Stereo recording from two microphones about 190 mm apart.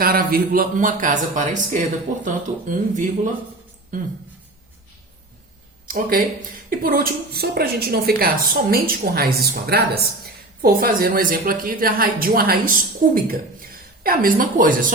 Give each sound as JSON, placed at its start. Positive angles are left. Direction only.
{"t": 0.0, "sound": "a woman's voice", "side_deg": -50}
{"t": 5.9, "sound": "a woman's voice", "side_deg": -50}